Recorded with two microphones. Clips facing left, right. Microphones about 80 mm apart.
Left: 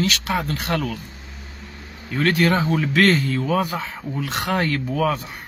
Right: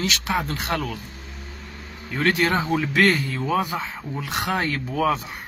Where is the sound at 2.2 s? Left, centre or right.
Centre.